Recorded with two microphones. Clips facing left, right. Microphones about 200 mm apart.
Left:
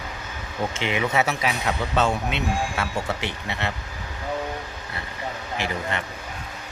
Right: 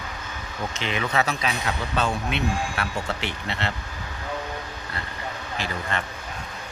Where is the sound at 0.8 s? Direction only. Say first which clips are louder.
Left 1 dB; 20° left (ahead or behind).